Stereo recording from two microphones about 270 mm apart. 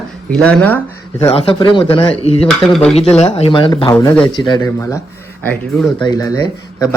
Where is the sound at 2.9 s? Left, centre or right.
Left.